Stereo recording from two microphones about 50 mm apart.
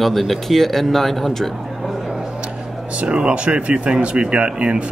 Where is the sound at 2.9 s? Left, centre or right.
Right.